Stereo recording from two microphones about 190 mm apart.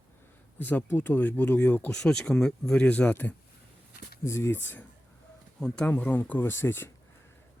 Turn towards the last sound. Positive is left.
turn(degrees=10)  # may be behind; listen again after turning